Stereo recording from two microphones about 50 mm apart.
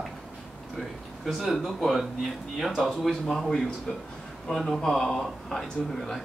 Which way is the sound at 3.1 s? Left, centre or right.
Centre.